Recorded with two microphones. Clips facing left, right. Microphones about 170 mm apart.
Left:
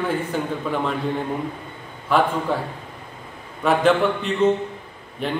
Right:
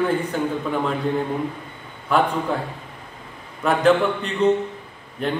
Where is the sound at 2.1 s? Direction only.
Centre (ahead or behind).